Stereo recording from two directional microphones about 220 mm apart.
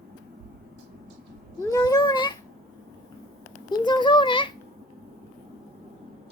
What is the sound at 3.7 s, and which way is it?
Speech, 20° left (ahead or behind).